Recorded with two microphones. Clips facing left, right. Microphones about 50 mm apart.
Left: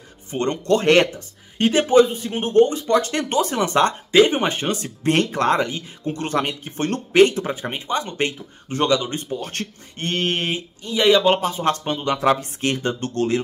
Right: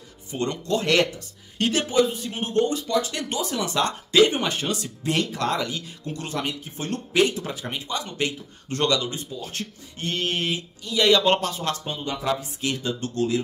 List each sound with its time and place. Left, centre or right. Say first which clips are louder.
0.3 s speech: left 6 dB; left
1.6 s speech: left 5 dB; left
1.9 s speech: left 7 dB; left
2.9 s speech: left 6 dB; left
4.1 s speech: left 2 dB; left
6.1 s speech: left 6 dB; left
8.6 s speech: left 4 dB; centre
9.1 s speech: left 6 dB; left; by 11.3 s centre
11.7 s speech: left 7 dB; left